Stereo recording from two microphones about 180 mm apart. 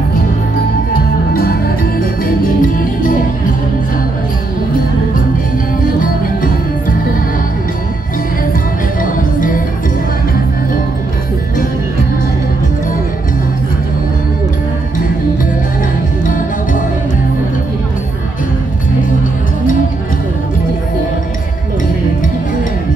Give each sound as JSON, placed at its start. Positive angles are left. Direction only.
{"t": 1.3, "sound": "music", "side_deg": 60}
{"t": 6.2, "sound": "music", "side_deg": 50}
{"t": 9.0, "sound": "music", "side_deg": 50}